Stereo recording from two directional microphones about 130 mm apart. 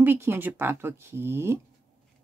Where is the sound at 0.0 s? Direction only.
15° right (ahead or behind).